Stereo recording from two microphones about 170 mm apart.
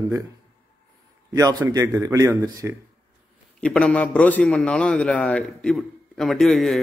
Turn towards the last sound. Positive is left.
turn(degrees=0)  # may be behind; listen again after turning